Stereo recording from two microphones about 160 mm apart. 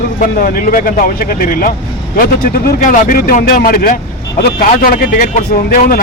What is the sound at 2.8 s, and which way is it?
Speech, 55° left (ahead or behind).